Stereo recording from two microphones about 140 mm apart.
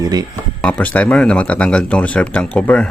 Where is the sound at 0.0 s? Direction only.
30° right (ahead or behind).